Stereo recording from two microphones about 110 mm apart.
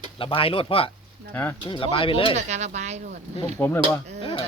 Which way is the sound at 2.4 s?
90° right.